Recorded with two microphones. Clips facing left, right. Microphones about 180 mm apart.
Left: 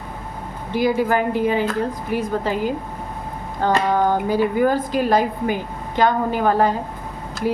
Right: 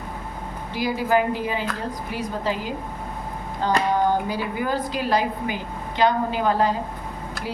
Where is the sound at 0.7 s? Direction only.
50° left (ahead or behind).